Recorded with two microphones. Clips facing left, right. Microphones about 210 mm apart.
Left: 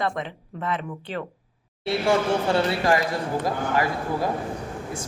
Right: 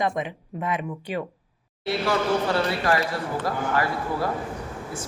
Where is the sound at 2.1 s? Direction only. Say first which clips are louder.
Left 2 dB; 25° left (ahead or behind).